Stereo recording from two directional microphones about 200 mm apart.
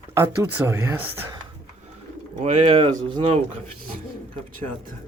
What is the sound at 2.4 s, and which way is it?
Speech, 30° right (ahead or behind).